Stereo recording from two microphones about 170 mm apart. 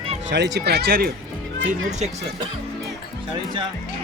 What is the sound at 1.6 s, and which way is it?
Speech, 45° right (ahead or behind).